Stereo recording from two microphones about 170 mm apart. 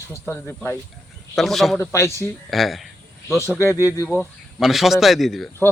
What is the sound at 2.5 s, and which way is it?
Speech, centre (ahead or behind).